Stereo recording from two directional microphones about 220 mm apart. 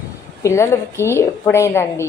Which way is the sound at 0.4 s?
15° left (ahead or behind).